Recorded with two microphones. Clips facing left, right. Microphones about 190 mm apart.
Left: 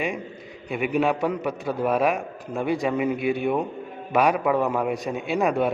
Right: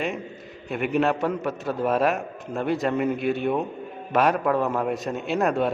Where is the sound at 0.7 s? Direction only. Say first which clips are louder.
Even; 10° left (ahead or behind).